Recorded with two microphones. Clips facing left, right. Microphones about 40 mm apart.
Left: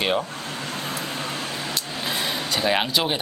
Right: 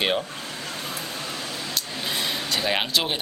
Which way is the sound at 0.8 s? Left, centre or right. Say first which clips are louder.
Left 3 dB; left.